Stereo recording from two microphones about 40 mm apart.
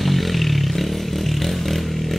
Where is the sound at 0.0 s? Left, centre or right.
Centre.